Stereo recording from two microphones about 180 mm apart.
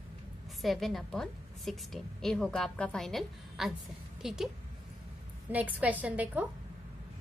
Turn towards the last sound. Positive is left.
turn(degrees=-10)  # may be behind; listen again after turning